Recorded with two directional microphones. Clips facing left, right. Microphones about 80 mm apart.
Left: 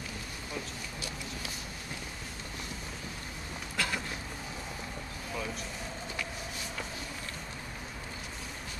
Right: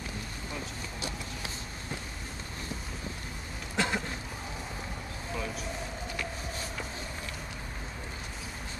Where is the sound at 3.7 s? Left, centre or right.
Right.